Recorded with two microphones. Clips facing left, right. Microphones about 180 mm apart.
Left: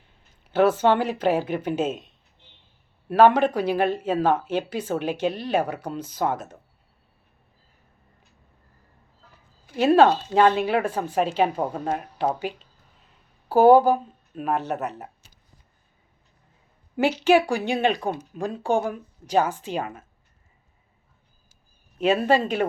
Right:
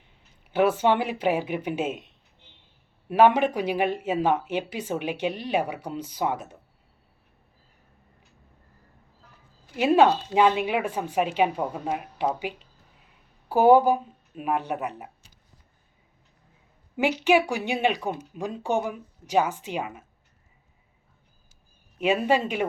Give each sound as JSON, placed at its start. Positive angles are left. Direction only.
{"t": 0.5, "sound": "speech", "side_deg": -15}
{"t": 3.1, "sound": "speech", "side_deg": -15}
{"t": 9.7, "sound": "speech", "side_deg": -15}
{"t": 17.0, "sound": "speech", "side_deg": -15}
{"t": 21.9, "sound": "speech", "side_deg": -10}